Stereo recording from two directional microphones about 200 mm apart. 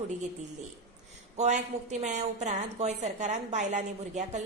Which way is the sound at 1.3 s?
35° right (ahead or behind).